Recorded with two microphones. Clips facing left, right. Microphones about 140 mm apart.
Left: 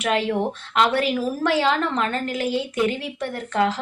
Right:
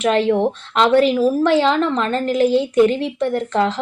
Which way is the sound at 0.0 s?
30° right (ahead or behind).